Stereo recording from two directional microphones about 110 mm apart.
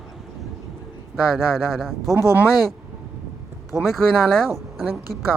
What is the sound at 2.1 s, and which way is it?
Speech, 25° right (ahead or behind).